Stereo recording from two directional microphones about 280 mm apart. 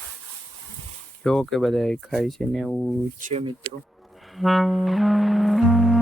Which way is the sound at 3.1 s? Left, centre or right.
Right.